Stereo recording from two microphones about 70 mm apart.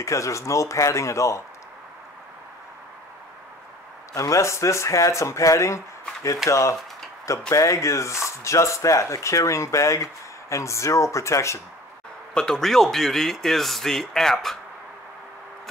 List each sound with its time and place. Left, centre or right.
0.0 s speech: left
4.1 s speech: left
12.4 s speech: centre